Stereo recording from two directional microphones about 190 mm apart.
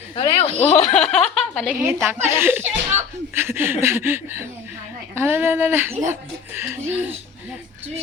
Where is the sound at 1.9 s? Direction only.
10° right (ahead or behind).